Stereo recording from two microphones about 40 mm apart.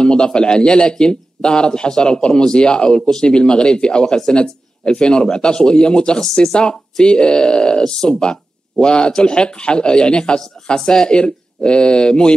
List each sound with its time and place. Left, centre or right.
0.0 s a man's voice: left